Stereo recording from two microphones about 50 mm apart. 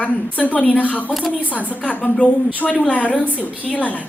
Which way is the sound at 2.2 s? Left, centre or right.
Left.